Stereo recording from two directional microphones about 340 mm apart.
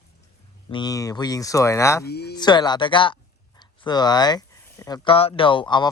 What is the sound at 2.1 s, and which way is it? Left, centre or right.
Speech, left.